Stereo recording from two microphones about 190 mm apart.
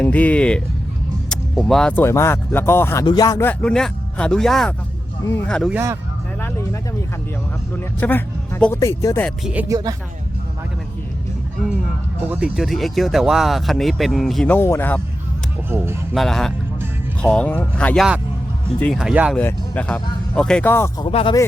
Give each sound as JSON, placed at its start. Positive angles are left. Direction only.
{"t": 0.0, "sound": "speech", "side_deg": 5}
{"t": 5.7, "sound": "music", "side_deg": -15}
{"t": 7.9, "sound": "speech", "side_deg": 10}
{"t": 9.2, "sound": "music", "side_deg": -5}
{"t": 12.3, "sound": "speech", "side_deg": -5}
{"t": 15.7, "sound": "music", "side_deg": -10}
{"t": 16.1, "sound": "speech", "side_deg": 0}
{"t": 19.4, "sound": "speech", "side_deg": 10}
{"t": 21.1, "sound": "speech", "side_deg": 30}